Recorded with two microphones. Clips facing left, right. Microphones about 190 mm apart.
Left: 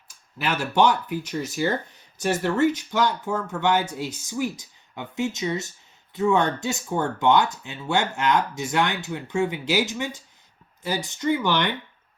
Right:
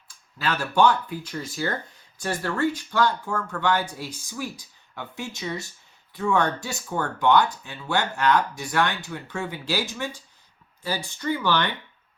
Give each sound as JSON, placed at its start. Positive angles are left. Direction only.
{"t": 0.3, "sound": "speech", "side_deg": 20}